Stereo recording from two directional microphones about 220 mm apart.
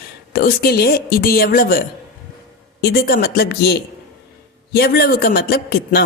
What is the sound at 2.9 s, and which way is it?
Speech, 45° left (ahead or behind).